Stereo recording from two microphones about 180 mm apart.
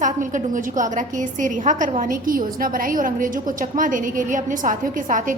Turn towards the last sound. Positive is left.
turn(degrees=-45)  # may be behind; listen again after turning